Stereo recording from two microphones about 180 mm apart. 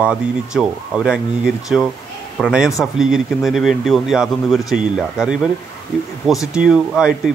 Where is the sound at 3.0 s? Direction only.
5° right (ahead or behind).